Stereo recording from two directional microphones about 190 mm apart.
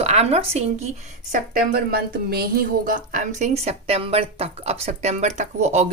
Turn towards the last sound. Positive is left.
turn(degrees=-35)  # may be behind; listen again after turning